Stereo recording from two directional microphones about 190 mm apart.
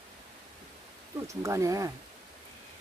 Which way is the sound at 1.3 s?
15° right (ahead or behind).